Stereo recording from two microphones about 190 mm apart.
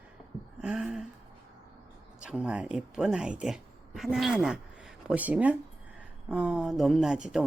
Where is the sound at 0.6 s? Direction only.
5° right (ahead or behind).